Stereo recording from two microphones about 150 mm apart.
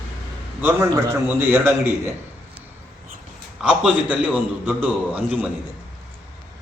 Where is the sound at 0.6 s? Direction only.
15° right (ahead or behind).